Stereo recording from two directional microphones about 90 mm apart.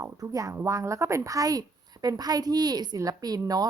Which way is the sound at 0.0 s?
40° right (ahead or behind).